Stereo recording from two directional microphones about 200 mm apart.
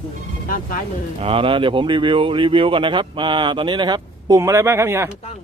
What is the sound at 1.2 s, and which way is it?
Speech, 25° right (ahead or behind).